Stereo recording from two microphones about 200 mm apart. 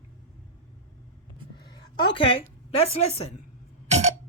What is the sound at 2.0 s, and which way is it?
A woman's voice, 25° left (ahead or behind).